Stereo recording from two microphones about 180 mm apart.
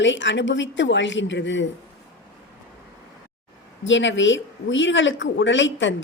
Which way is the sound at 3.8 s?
90° left.